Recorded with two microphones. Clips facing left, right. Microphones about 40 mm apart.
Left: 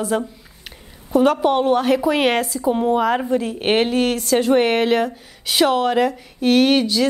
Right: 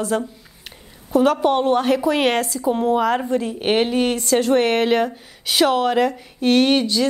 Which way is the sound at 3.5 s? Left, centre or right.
Centre.